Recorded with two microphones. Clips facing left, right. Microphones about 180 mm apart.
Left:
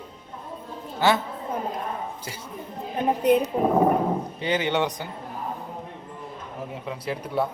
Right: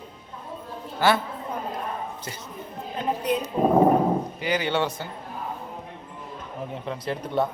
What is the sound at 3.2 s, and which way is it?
Speech, 55° left (ahead or behind).